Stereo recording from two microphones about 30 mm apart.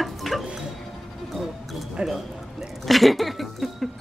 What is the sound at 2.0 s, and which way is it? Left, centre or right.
Speech, centre.